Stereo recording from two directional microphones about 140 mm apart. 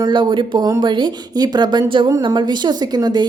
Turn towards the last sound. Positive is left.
turn(degrees=-30)  # may be behind; listen again after turning